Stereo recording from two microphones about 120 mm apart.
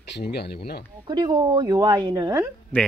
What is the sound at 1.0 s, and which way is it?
Speech, 35° right (ahead or behind).